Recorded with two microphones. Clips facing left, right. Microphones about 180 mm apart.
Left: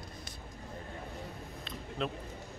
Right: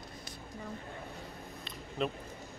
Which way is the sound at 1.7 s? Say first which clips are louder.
Right 2 dB; 5° right (ahead or behind).